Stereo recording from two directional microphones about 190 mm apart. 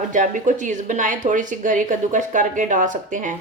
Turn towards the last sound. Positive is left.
turn(degrees=-40)  # may be behind; listen again after turning